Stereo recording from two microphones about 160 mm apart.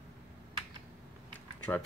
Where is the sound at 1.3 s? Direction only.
10° left (ahead or behind).